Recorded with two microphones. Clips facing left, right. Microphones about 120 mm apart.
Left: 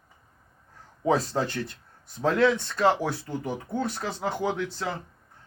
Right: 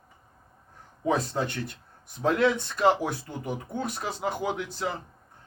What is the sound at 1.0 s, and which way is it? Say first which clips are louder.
Speech: left 2 dB; 30° left (ahead or behind).